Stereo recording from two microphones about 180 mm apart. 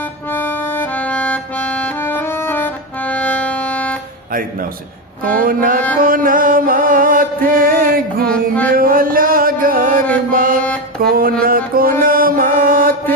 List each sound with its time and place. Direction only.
0.3 s music: 10° left (ahead or behind)
5.2 s mantra: 50° right (ahead or behind)
6.0 s music: 50° right (ahead or behind)
8.3 s music: 5° left (ahead or behind)
8.7 s music: 50° right (ahead or behind)
10.3 s mantra: 50° right (ahead or behind)